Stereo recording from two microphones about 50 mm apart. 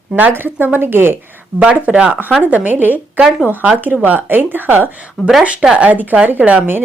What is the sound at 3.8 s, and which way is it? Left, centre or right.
Speech, right.